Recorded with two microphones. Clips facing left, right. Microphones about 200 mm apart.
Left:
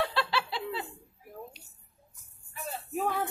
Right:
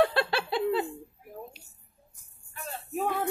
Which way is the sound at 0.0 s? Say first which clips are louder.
Right 6 dB; 50° right (ahead or behind).